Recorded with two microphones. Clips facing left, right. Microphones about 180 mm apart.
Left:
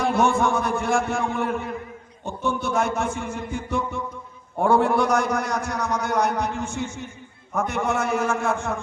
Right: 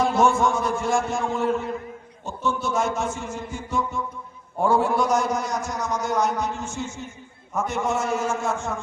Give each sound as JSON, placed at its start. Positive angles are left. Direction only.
{"t": 0.0, "sound": "a man's voice", "side_deg": 60}